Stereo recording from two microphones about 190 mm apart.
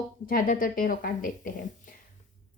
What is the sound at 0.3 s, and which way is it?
Speech, 45° left (ahead or behind).